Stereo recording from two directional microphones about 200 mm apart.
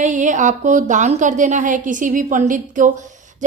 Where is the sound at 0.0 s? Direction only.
40° right (ahead or behind).